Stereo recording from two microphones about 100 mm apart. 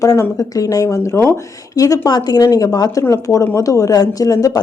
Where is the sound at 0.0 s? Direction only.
35° left (ahead or behind).